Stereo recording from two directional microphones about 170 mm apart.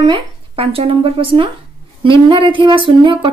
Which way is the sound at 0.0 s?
30° right (ahead or behind).